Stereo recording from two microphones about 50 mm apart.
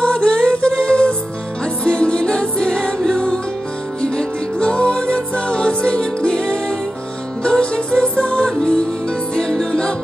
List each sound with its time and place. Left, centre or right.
0.0 s music: centre